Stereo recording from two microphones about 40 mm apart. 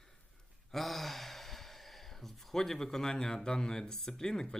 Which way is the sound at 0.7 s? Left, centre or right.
Centre.